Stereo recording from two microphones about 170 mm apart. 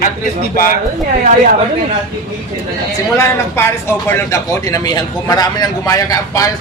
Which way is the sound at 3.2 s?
15° left (ahead or behind).